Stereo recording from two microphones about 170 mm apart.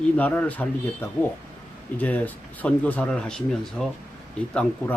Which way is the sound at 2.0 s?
10° left (ahead or behind).